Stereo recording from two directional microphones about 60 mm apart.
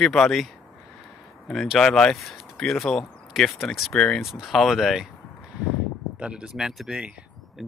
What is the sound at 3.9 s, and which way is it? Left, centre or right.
Speech, centre.